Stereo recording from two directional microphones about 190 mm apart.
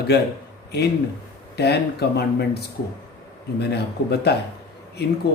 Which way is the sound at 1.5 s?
60° left (ahead or behind).